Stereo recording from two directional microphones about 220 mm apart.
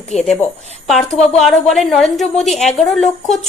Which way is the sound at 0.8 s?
Centre (ahead or behind).